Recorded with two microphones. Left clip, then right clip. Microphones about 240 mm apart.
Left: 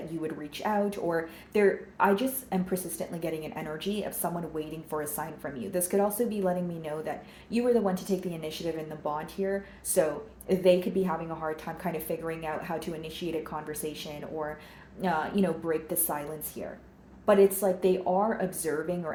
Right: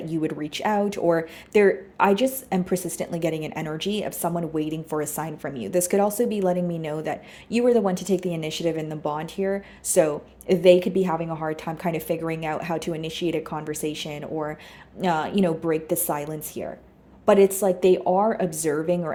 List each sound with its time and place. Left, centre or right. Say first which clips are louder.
0.2 s speech: right 8 dB; right